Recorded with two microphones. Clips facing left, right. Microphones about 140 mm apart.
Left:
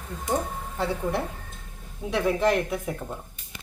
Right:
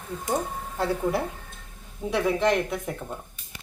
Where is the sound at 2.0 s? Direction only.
Centre (ahead or behind).